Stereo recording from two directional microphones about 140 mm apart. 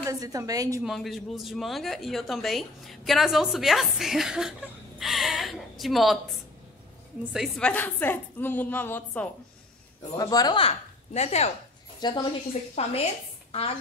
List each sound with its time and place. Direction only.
0.0 s a woman's voice: 25° right (ahead or behind)
0.8 s speech: centre (ahead or behind)
7.3 s speech: centre (ahead or behind)
7.7 s a woman's voice: 15° left (ahead or behind)
10.1 s a man's voice: 25° left (ahead or behind)
10.6 s a woman's voice: 50° left (ahead or behind)
12.0 s a woman's voice: 35° left (ahead or behind)
12.6 s a woman's voice: 50° left (ahead or behind)